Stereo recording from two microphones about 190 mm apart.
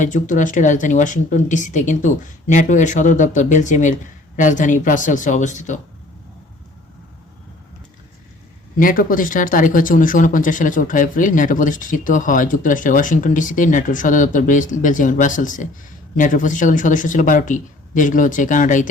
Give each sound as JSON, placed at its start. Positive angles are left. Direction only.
{"t": 0.0, "sound": "speech", "side_deg": 40}
{"t": 8.8, "sound": "speech", "side_deg": 45}